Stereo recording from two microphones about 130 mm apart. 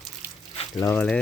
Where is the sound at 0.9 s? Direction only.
10° left (ahead or behind).